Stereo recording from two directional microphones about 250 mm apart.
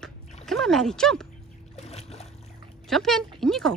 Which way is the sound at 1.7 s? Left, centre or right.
Left.